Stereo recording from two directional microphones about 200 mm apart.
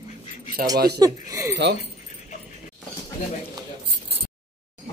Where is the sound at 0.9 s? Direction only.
15° right (ahead or behind).